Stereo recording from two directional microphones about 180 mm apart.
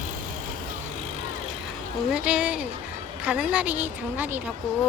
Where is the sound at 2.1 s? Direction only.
5° right (ahead or behind).